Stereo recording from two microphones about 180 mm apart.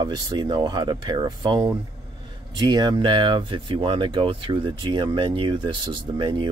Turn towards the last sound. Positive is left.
turn(degrees=-25)  # may be behind; listen again after turning